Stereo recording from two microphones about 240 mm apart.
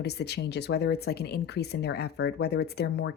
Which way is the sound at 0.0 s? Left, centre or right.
Left.